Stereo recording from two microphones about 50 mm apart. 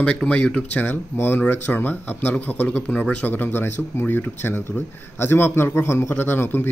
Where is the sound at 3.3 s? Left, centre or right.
Left.